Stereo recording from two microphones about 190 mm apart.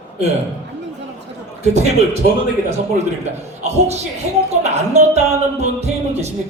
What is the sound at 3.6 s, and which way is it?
Speech, 35° right (ahead or behind).